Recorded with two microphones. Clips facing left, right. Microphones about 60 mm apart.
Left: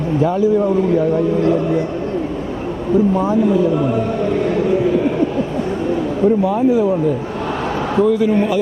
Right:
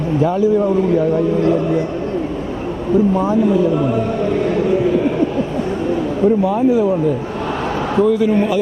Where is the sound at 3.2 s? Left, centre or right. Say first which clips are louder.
Even; right.